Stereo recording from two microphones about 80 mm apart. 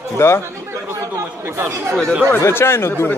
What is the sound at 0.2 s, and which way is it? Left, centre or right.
Speech, left.